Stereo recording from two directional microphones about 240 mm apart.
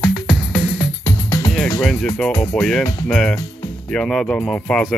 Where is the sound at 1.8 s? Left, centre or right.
Centre.